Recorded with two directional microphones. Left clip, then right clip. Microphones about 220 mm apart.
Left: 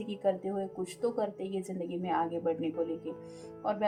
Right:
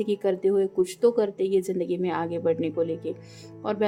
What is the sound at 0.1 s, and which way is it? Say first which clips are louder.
A woman's voice: right 7 dB; 45° right (ahead or behind).